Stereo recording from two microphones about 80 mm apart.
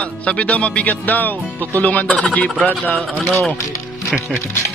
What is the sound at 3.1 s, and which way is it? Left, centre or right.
Speech, centre.